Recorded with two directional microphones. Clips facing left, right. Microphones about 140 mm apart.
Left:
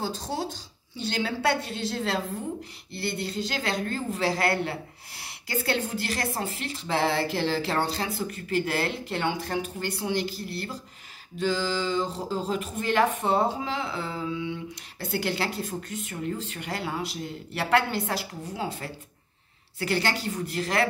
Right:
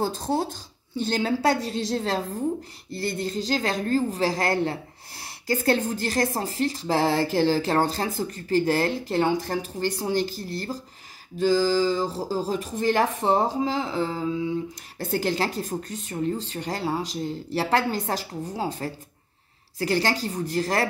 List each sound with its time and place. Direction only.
0.0 s speech: 50° right (ahead or behind)